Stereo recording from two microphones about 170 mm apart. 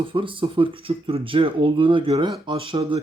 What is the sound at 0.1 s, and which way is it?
Speech, 30° right (ahead or behind).